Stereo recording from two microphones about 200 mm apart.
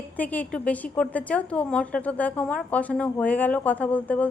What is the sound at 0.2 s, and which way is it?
A woman's voice, 10° left (ahead or behind).